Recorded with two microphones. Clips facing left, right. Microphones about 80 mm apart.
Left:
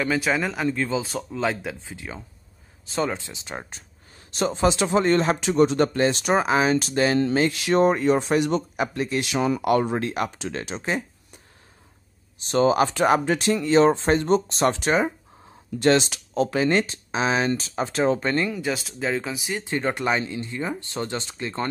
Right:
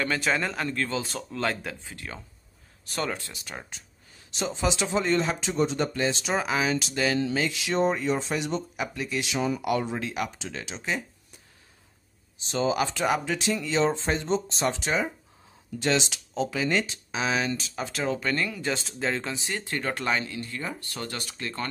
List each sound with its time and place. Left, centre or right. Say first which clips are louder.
0.0 s speech: left 3 dB; centre
4.3 s speech: left 6 dB; left
6.4 s speech: left 6 dB; left
8.7 s speech: left 6 dB; left
12.4 s speech: left 7 dB; left
18.6 s speech: left 3 dB; centre
19.6 s speech: left 6 dB; left